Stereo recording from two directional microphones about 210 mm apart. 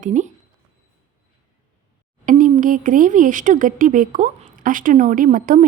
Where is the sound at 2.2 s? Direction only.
40° right (ahead or behind).